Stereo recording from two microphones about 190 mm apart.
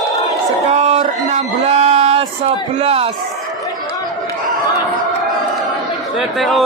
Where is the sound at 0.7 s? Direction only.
35° right (ahead or behind).